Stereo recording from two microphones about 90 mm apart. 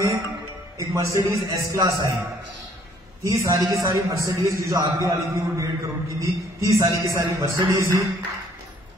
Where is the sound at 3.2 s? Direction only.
35° right (ahead or behind).